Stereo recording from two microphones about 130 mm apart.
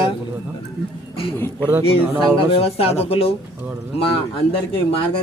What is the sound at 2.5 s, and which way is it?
Speech, 50° left (ahead or behind).